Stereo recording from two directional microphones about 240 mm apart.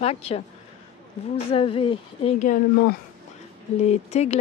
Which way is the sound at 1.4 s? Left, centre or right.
Left.